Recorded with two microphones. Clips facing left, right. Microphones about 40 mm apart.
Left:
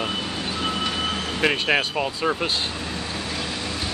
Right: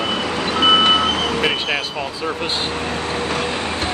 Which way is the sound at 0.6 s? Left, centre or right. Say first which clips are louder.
Right 14 dB; right.